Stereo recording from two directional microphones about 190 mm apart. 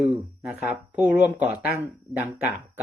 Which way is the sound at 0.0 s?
Centre (ahead or behind).